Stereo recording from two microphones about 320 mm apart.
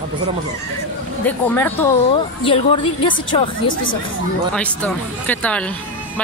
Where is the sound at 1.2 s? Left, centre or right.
Centre.